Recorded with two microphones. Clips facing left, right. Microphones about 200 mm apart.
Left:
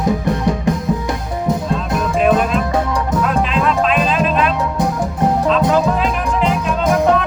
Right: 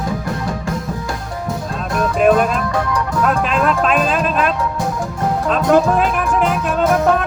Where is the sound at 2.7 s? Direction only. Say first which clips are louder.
Left 2 dB; 25° left (ahead or behind).